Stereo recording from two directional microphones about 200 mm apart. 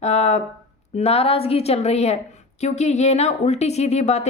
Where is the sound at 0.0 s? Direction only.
35° left (ahead or behind).